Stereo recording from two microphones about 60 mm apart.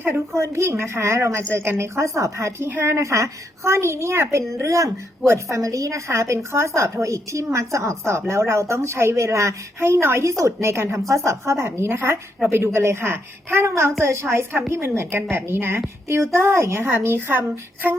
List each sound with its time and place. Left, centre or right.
0.3 s a woman's voice: right
2.6 s a woman's voice: right
10.2 s a woman's voice: right